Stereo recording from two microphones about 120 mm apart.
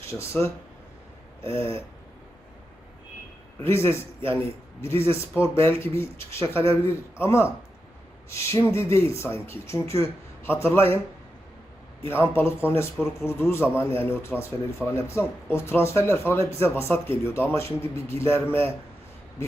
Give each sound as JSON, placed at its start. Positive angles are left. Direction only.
{"t": 0.0, "sound": "a man's voice", "side_deg": 25}
{"t": 3.6, "sound": "a man's voice", "side_deg": 20}
{"t": 12.0, "sound": "a man's voice", "side_deg": 20}
{"t": 14.8, "sound": "speech", "side_deg": -5}
{"t": 15.4, "sound": "a man's voice", "side_deg": 20}